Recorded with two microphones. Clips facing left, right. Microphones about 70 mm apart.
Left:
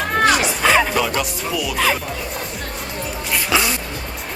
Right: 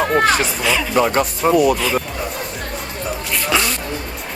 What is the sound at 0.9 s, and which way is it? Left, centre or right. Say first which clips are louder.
Speech: right 4 dB; right.